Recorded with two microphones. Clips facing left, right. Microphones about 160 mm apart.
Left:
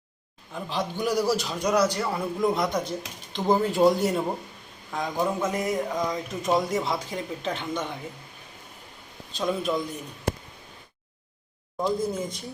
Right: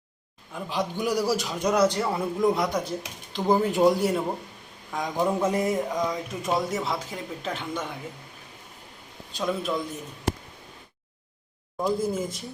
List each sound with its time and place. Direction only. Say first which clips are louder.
0.5 s a man's voice: right 1 dB; 10° right (ahead or behind)
1.7 s speech: right 1 dB; 25° right (ahead or behind)
2.4 s a man's voice: right 1 dB; 10° right (ahead or behind)
5.5 s speech: right 2 dB; 30° right (ahead or behind)
6.0 s speech: even; 5° right (ahead or behind)
9.4 s speech: left 1 dB; 5° left (ahead or behind)
11.8 s a man's voice: right 1 dB; 10° right (ahead or behind)